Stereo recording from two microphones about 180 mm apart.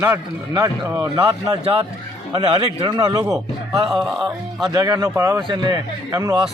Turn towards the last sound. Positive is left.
turn(degrees=-20)  # may be behind; listen again after turning